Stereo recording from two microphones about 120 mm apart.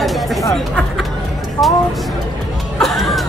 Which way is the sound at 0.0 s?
Centre (ahead or behind).